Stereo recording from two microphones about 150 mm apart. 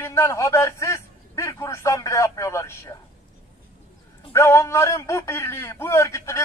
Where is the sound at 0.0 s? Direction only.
15° left (ahead or behind).